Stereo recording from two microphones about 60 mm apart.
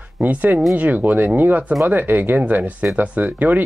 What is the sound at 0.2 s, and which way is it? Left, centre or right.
Speech, right.